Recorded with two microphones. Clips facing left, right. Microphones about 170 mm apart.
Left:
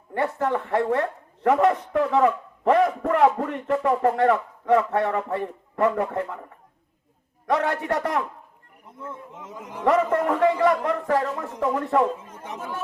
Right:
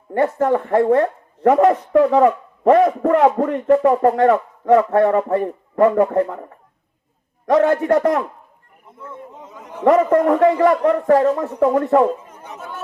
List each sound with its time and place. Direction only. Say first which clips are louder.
0.1 s speech: right 7 dB; 40° right (ahead or behind)
7.5 s speech: right 9 dB; 40° right (ahead or behind)
9.8 s speech: right 7 dB; 40° right (ahead or behind)